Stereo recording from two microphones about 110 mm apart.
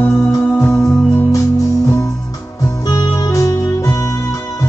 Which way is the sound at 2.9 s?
30° left (ahead or behind).